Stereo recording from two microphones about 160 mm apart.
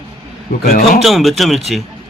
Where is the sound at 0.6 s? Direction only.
65° left (ahead or behind).